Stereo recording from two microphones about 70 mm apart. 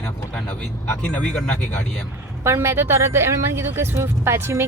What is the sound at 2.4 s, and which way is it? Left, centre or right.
Speech, right.